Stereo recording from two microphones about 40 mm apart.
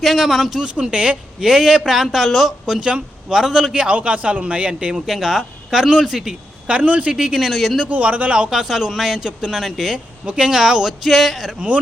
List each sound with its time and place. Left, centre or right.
0.0 s a man's voice: centre
0.6 s speech: right
1.5 s speech: centre
2.8 s speech: right
3.3 s speech: centre
3.9 s a man's voice: right
5.0 s speech: centre
6.7 s a man's voice: right
7.3 s a man's voice: centre
7.9 s a man's voice: right
8.4 s speech: centre
10.2 s speech: centre